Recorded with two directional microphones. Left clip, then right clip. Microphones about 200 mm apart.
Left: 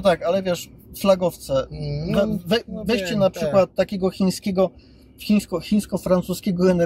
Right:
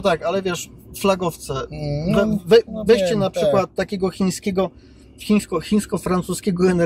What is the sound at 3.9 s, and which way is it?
Speech, 15° left (ahead or behind).